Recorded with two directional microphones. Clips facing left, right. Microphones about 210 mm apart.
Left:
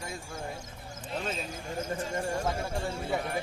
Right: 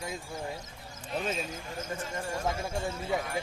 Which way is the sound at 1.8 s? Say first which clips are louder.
Left 4 dB; 30° left (ahead or behind).